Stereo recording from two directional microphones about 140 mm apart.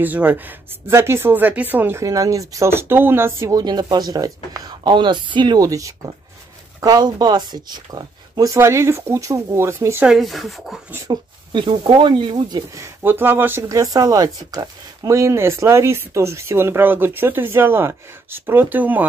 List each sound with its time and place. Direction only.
0.0 s speech: 10° right (ahead or behind)
10.1 s speech: centre (ahead or behind)
11.1 s speech: 35° right (ahead or behind)
12.7 s speech: 15° right (ahead or behind)